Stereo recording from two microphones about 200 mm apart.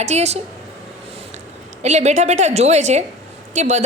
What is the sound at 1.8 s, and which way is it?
A woman's voice, 35° right (ahead or behind).